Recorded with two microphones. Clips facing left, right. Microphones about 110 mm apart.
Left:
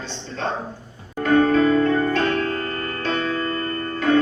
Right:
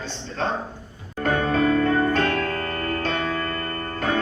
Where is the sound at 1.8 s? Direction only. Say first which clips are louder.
Left 1 dB; 50° right (ahead or behind).